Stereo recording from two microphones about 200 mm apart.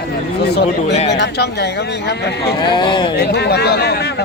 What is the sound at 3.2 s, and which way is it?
Speech, 55° left (ahead or behind).